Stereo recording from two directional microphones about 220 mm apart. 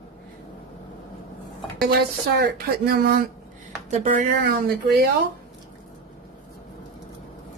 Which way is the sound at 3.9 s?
30° right (ahead or behind).